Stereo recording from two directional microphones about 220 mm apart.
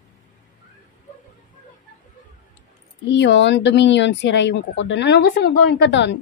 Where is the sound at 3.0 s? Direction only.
55° left (ahead or behind).